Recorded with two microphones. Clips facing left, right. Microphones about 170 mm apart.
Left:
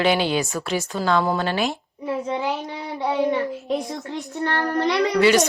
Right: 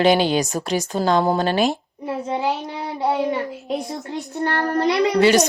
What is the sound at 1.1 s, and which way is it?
Speech, 30° right (ahead or behind).